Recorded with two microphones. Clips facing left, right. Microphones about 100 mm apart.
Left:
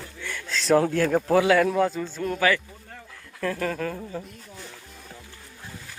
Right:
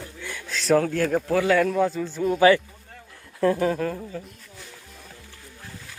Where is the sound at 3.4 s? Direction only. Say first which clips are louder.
Right 7 dB; 25° right (ahead or behind).